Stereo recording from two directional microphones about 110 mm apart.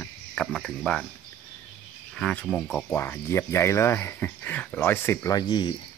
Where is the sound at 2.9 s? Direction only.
20° left (ahead or behind).